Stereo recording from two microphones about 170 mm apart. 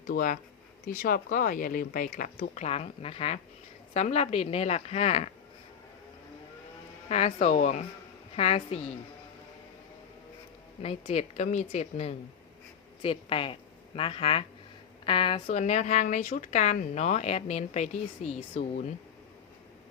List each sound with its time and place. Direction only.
0.1 s speech: 55° left (ahead or behind)
7.1 s speech: 40° left (ahead or behind)
10.8 s a woman's voice: 35° left (ahead or behind)
15.4 s speech: 40° left (ahead or behind)